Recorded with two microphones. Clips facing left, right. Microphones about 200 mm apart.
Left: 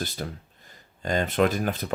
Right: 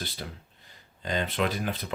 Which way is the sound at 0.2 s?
50° left (ahead or behind).